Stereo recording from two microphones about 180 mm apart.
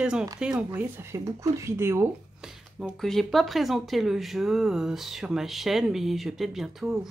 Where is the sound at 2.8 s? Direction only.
Centre (ahead or behind).